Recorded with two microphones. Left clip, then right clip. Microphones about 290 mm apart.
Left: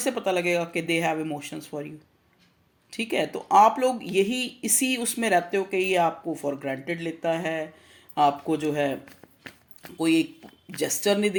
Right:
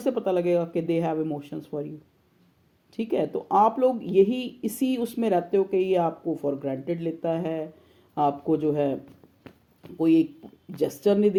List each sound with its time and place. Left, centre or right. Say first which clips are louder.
0.0 s speech: right 1 dB; centre
2.9 s speech: even; centre
10.0 s speech: right 2 dB; centre